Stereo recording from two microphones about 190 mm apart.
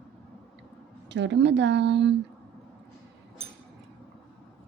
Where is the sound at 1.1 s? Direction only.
70° right (ahead or behind).